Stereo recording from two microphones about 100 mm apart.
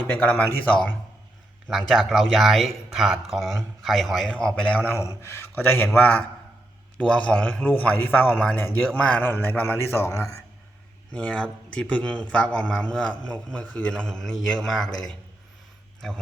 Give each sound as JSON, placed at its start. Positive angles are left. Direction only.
{"t": 0.0, "sound": "a man's voice", "side_deg": 15}
{"t": 1.9, "sound": "speech", "side_deg": 0}
{"t": 4.9, "sound": "a man's voice", "side_deg": 25}
{"t": 11.1, "sound": "a man's voice", "side_deg": 10}